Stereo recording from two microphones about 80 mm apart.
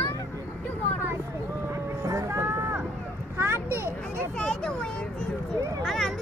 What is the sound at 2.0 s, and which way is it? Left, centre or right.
Vehicle, right.